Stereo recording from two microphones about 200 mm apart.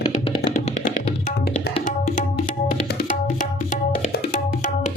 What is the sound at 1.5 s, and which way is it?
Tabla, 50° left (ahead or behind).